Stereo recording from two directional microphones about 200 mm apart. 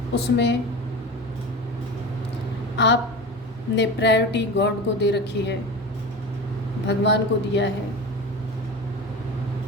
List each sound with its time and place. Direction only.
0.1 s a woman's voice: 55° left (ahead or behind)
2.7 s a woman's voice: 60° left (ahead or behind)
6.8 s a woman's voice: 60° left (ahead or behind)